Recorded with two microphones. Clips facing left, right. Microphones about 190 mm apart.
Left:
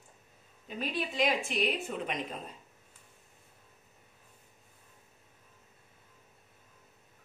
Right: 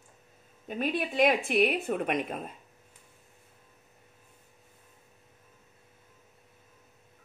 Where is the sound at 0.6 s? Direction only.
55° right (ahead or behind).